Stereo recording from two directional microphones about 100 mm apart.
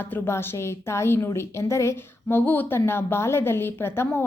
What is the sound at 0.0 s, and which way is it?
A woman's voice, 25° left (ahead or behind).